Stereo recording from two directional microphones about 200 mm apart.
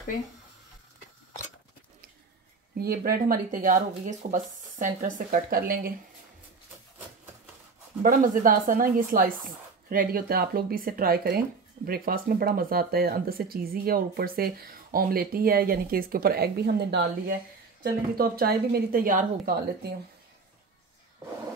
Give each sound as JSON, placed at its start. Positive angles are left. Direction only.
{"t": 2.7, "sound": "a woman's voice", "side_deg": -50}
{"t": 8.0, "sound": "a woman's voice", "side_deg": -40}